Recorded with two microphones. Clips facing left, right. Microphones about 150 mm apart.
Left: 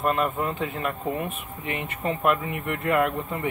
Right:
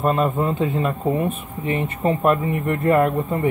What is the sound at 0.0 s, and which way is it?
Speech, 30° right (ahead or behind).